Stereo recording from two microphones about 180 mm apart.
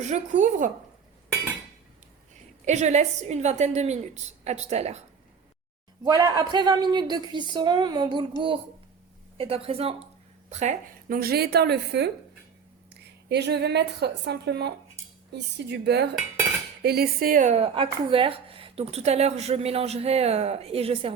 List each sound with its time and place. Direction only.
0.0 s a woman's voice: 40° right (ahead or behind)
2.6 s speech: 40° right (ahead or behind)
6.1 s a woman's voice: 20° right (ahead or behind)
9.4 s a woman's voice: 30° right (ahead or behind); by 12.1 s 70° right (ahead or behind)
13.2 s a woman's voice: 70° right (ahead or behind); by 21.1 s 30° right (ahead or behind)